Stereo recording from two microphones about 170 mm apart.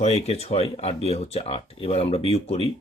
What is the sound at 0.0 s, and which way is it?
Speech, 40° left (ahead or behind).